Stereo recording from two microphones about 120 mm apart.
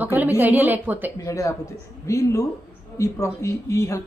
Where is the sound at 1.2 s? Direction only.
25° left (ahead or behind).